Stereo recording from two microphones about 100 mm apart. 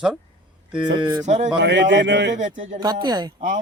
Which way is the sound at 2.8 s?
45° right (ahead or behind).